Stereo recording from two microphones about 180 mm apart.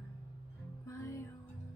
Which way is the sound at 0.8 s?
15° left (ahead or behind).